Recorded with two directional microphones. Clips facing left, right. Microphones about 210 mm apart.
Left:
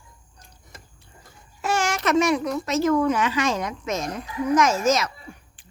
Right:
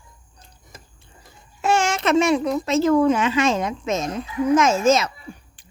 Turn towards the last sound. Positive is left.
turn(degrees=-25)  # may be behind; listen again after turning